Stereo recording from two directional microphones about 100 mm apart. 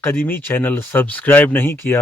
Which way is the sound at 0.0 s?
20° left (ahead or behind).